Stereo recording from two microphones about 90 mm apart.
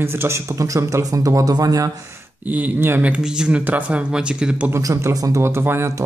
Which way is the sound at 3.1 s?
10° right (ahead or behind).